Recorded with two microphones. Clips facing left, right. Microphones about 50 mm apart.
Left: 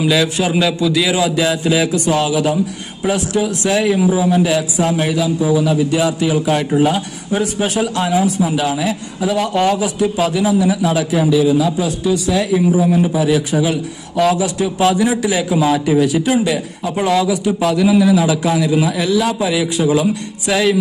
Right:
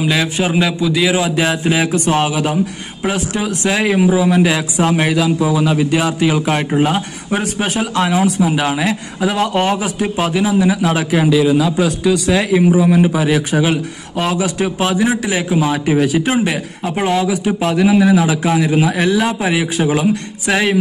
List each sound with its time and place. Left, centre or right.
0.0 s a man's voice: centre
1.2 s a man's voice: right
2.0 s a man's voice: right
5.2 s a man's voice: right
5.6 s a man's voice: right
5.9 s a man's voice: right
8.1 s a man's voice: right
9.7 s a man's voice: right
14.1 s a man's voice: right
17.1 s a man's voice: right
17.5 s a man's voice: right